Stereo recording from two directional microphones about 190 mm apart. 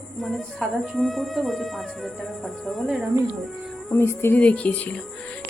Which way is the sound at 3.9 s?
10° left (ahead or behind).